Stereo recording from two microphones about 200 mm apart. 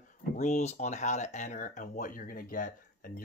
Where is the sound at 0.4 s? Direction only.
35° left (ahead or behind).